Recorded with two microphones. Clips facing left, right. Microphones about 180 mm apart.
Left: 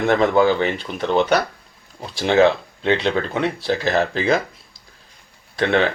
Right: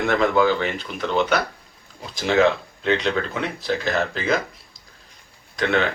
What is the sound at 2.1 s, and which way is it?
Speech, 35° left (ahead or behind).